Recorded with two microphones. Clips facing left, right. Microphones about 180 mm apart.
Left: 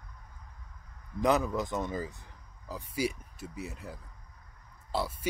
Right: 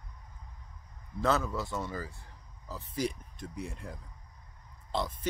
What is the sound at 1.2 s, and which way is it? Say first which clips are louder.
Speech: left 3 dB; 15° left (ahead or behind).